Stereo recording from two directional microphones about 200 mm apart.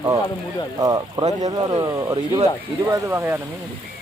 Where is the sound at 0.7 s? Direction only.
20° right (ahead or behind).